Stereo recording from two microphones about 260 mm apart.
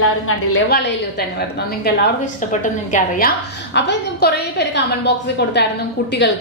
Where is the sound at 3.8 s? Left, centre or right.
Left.